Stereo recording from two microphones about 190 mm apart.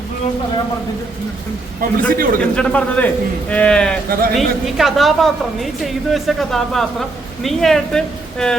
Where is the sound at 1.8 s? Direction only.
50° right (ahead or behind).